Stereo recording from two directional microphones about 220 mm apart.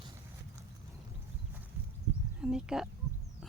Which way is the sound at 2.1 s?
10° right (ahead or behind).